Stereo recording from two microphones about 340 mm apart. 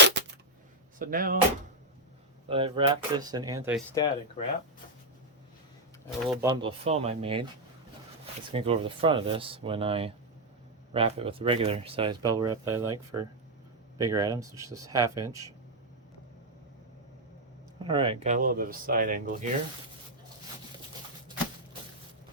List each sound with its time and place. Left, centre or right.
0.9 s speech: right
2.5 s speech: centre
3.9 s speech: centre
6.1 s speech: centre
8.4 s speech: centre
17.7 s speech: centre